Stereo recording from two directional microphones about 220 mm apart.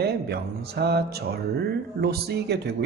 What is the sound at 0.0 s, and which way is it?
A man's voice, 45° right (ahead or behind).